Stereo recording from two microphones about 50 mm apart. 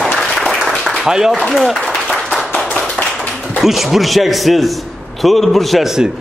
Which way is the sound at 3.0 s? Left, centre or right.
Centre.